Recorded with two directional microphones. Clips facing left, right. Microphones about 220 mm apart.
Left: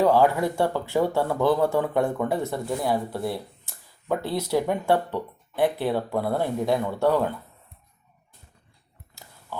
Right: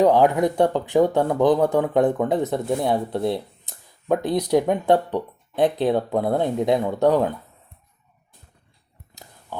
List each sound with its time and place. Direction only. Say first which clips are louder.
0.0 s speech: right 3 dB; 20° right (ahead or behind)